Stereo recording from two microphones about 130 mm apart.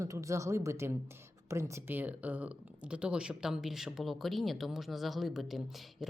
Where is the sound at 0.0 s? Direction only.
25° right (ahead or behind).